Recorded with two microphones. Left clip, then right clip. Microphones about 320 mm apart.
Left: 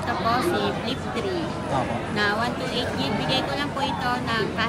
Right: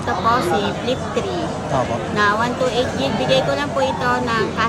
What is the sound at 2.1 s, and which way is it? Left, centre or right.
Speech, centre.